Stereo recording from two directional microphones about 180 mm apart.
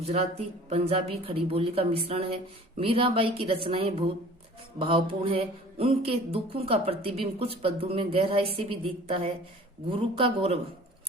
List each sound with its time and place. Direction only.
0.0 s speech: 35° right (ahead or behind)